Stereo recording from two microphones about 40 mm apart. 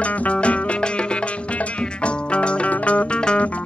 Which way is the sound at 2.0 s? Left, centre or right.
Left.